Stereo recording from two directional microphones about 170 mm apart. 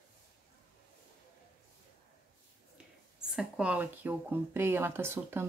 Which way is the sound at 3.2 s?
5° right (ahead or behind).